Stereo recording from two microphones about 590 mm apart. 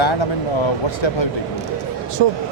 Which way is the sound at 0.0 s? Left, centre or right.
Left.